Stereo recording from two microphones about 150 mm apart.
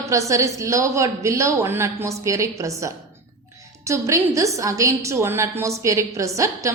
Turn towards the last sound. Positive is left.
turn(degrees=-20)  # may be behind; listen again after turning